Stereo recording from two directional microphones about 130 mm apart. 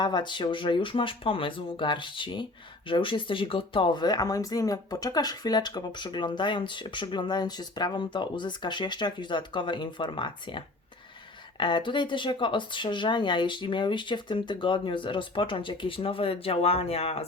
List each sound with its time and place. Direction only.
0.0 s speech: 35° left (ahead or behind); by 17.2 s 50° left (ahead or behind)